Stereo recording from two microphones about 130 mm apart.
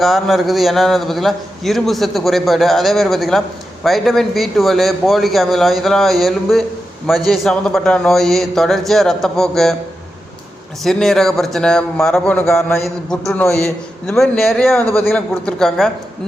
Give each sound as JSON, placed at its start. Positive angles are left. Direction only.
{"t": 0.0, "sound": "a man's voice", "side_deg": 0}
{"t": 10.8, "sound": "a man's voice", "side_deg": 0}